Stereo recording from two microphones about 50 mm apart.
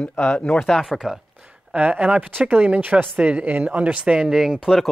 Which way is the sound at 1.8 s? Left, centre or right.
Right.